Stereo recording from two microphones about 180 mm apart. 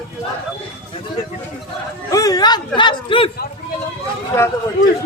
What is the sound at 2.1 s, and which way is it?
Speech, 20° left (ahead or behind).